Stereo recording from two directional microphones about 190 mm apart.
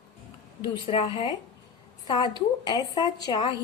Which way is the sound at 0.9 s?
30° left (ahead or behind).